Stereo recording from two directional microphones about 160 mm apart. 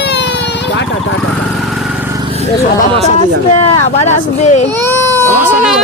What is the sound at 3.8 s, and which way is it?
Speech, 45° left (ahead or behind).